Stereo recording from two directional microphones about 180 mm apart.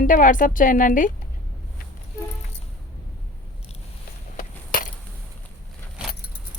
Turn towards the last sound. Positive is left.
turn(degrees=50)  # may be behind; listen again after turning